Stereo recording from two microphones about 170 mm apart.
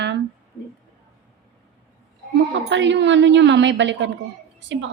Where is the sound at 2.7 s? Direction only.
90° right.